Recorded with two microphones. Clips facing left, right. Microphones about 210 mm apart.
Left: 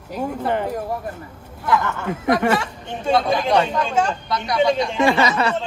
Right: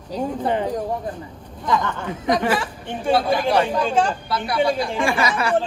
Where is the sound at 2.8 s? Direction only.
25° left (ahead or behind).